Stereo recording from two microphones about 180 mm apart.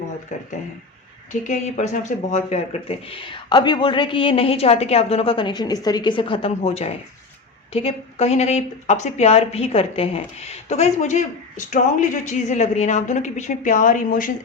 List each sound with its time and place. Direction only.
1.3 s speech: 40° left (ahead or behind)